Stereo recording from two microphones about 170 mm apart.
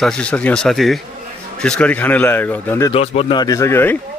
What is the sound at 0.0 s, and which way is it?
A man's voice, 5° left (ahead or behind).